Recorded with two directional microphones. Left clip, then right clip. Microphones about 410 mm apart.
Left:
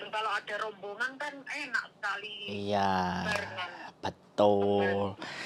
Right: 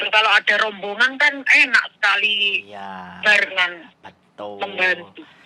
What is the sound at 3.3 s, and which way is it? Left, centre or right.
Speech, right.